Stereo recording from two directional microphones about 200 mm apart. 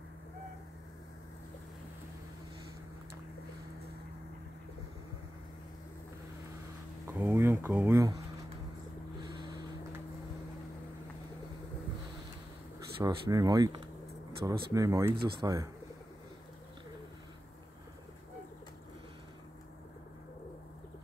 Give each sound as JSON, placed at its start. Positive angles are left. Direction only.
{"t": 7.1, "sound": "speech", "side_deg": -10}
{"t": 13.0, "sound": "speech", "side_deg": -20}